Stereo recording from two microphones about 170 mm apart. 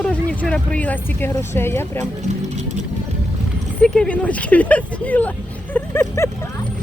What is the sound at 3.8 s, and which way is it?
Speech, 5° left (ahead or behind).